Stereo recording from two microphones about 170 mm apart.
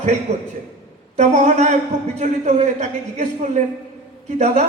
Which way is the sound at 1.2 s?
45° right (ahead or behind).